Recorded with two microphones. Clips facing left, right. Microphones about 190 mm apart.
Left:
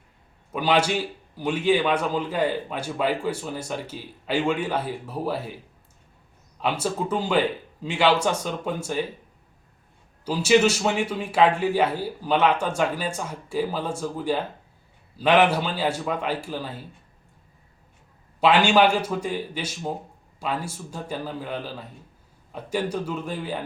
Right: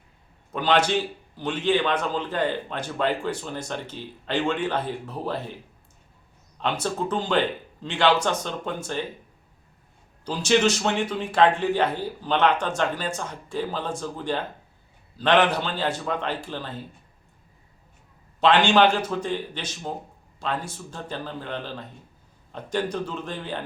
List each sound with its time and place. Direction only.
0.5 s a man's voice: 10° left (ahead or behind)
6.6 s a man's voice: 10° left (ahead or behind)
10.2 s a man's voice: 10° left (ahead or behind)
18.3 s a man's voice: 10° left (ahead or behind)